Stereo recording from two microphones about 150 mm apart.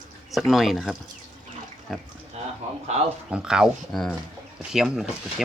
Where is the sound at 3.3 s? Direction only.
5° right (ahead or behind).